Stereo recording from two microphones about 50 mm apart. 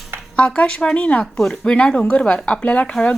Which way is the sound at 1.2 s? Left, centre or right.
Centre.